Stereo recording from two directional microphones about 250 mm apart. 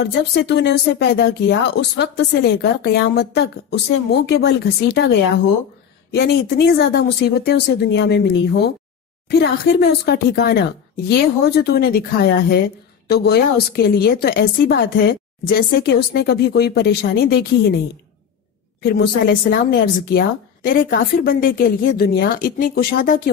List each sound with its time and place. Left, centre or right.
0.0 s speech: left
18.8 s speech: left